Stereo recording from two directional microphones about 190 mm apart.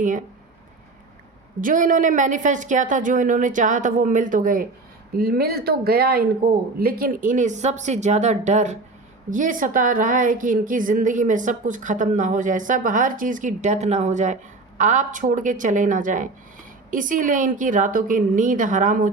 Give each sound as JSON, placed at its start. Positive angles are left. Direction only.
{"t": 1.6, "sound": "a woman's voice", "side_deg": -45}